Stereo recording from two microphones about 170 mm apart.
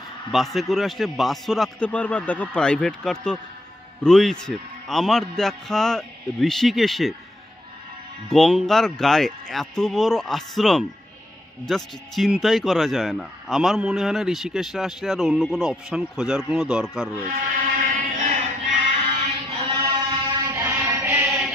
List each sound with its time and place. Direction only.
0.3 s speech: centre (ahead or behind)
8.3 s speech: centre (ahead or behind)
17.3 s music: 50° right (ahead or behind)
19.0 s chant: 35° right (ahead or behind)
20.4 s a sound: 20° right (ahead or behind)
20.9 s chant: 15° right (ahead or behind)